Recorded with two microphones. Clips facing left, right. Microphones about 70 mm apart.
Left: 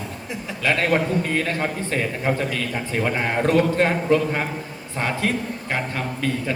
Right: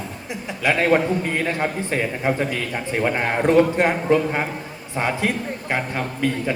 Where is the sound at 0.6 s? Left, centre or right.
Centre.